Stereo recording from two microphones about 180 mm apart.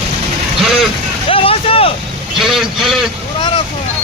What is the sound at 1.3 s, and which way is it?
Vehicle, 30° left (ahead or behind).